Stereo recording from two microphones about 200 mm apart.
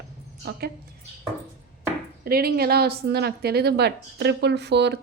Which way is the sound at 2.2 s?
50° right (ahead or behind).